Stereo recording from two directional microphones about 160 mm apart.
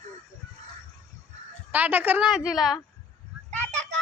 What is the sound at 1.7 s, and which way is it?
Speech, 10° right (ahead or behind).